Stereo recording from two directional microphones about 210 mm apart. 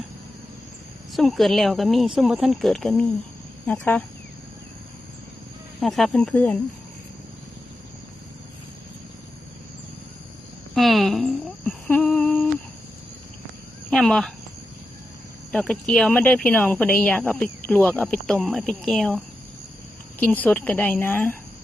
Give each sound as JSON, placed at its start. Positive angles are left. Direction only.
{"t": 1.1, "sound": "speech", "side_deg": 0}
{"t": 5.8, "sound": "speech", "side_deg": 0}
{"t": 10.8, "sound": "speech", "side_deg": 0}
{"t": 13.9, "sound": "speech", "side_deg": 0}
{"t": 15.5, "sound": "speech", "side_deg": 5}